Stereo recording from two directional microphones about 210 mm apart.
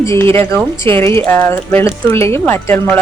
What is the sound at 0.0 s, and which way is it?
Speech, 15° left (ahead or behind).